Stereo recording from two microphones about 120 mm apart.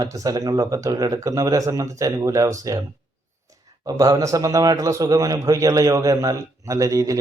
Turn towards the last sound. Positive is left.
turn(degrees=-30)  # may be behind; listen again after turning